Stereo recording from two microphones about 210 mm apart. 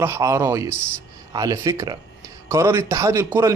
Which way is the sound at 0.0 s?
15° right (ahead or behind).